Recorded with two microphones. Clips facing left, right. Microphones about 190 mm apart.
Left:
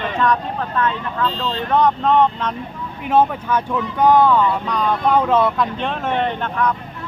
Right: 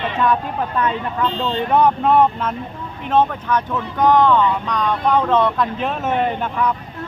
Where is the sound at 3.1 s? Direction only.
10° left (ahead or behind); by 6.7 s 5° right (ahead or behind).